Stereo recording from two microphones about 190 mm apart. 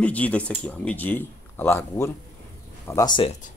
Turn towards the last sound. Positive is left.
turn(degrees=25)  # may be behind; listen again after turning